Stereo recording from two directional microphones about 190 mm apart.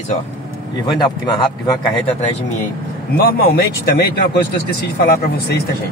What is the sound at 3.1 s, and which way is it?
Speech, 60° left (ahead or behind).